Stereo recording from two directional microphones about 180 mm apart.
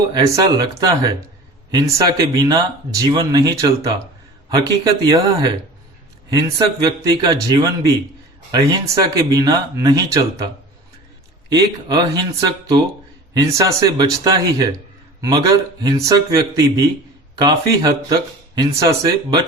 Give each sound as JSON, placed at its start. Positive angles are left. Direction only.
{"t": 0.1, "sound": "speech", "side_deg": -20}
{"t": 6.8, "sound": "speech", "side_deg": -20}